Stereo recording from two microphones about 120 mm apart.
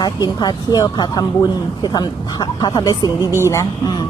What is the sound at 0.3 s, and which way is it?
Speech, 35° left (ahead or behind).